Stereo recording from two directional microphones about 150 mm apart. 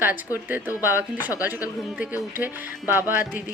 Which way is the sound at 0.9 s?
10° right (ahead or behind).